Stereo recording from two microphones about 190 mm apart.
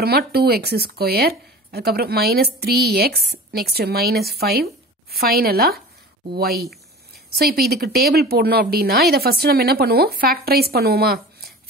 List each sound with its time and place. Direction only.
0.0 s a woman's voice: 55° right (ahead or behind)